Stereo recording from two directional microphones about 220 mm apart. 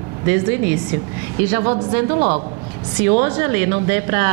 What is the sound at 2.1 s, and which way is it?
Speech, 35° right (ahead or behind).